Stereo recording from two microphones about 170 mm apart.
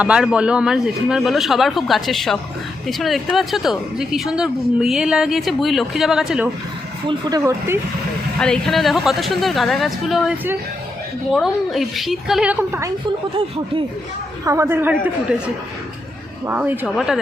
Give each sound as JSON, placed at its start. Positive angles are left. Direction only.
{"t": 0.0, "sound": "a woman's voice", "side_deg": -5}
{"t": 7.1, "sound": "speech", "side_deg": -20}
{"t": 8.4, "sound": "a woman's voice", "side_deg": 5}
{"t": 14.4, "sound": "a woman's voice", "side_deg": -15}
{"t": 16.5, "sound": "a woman's voice", "side_deg": -10}
{"t": 16.8, "sound": "a woman's voice", "side_deg": 0}